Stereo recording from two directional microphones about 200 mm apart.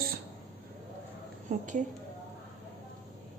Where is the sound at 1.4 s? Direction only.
40° right (ahead or behind).